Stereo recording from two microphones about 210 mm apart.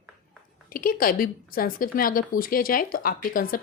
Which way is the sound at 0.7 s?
40° left (ahead or behind).